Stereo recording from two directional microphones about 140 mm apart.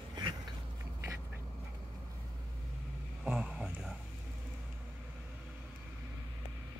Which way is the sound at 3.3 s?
5° right (ahead or behind).